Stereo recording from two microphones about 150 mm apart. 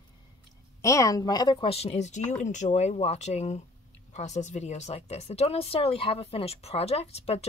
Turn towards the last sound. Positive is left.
turn(degrees=45)  # may be behind; listen again after turning